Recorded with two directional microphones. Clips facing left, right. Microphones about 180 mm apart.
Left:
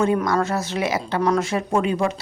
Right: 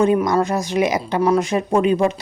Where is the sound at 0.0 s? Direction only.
15° right (ahead or behind).